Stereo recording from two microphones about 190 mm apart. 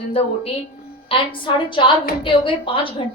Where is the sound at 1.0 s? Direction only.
25° left (ahead or behind).